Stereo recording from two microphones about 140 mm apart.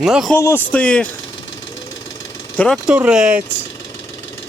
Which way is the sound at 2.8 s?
10° right (ahead or behind).